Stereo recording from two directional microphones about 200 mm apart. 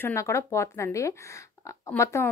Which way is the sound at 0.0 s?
15° left (ahead or behind).